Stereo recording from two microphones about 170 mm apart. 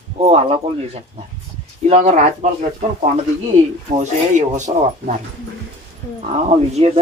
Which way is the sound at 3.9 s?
45° right (ahead or behind).